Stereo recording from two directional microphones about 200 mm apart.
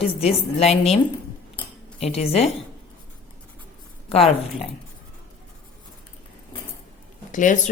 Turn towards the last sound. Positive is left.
turn(degrees=40)  # may be behind; listen again after turning